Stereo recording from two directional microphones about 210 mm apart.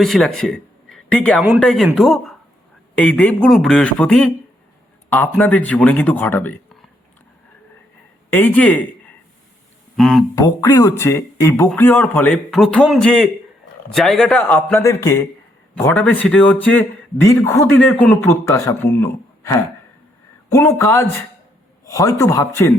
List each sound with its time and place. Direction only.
0.0 s a man's voice: centre (ahead or behind)
8.3 s speech: 10° left (ahead or behind)
10.0 s a man's voice: centre (ahead or behind)
10.3 s speech: 15° left (ahead or behind)